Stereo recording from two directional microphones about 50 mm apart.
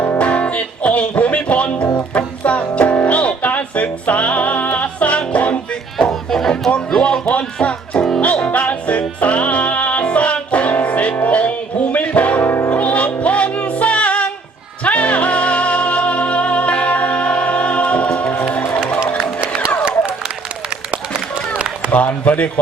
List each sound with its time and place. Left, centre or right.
0.2 s music: left
6.0 s a sound: centre
7.0 s music: left
12.4 s music: left
12.7 s music: left
19.1 s music: right
21.8 s a sound: left